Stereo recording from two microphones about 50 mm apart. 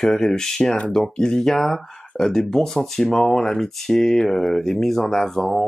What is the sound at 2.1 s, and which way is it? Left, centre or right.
Speech, centre.